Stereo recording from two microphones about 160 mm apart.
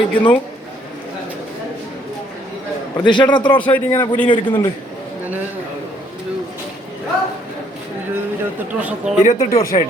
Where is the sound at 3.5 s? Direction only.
10° left (ahead or behind).